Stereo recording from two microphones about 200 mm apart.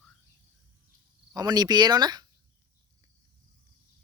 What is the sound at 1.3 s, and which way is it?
Speech, 20° right (ahead or behind).